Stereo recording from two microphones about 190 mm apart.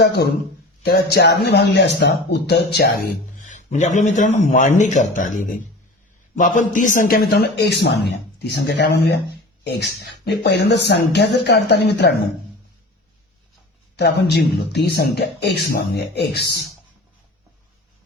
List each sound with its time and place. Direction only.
0.8 s a man's voice: 55° left (ahead or behind)
3.3 s a man's voice: 40° left (ahead or behind); by 12.1 s 60° left (ahead or behind)
13.9 s a man's voice: 60° left (ahead or behind)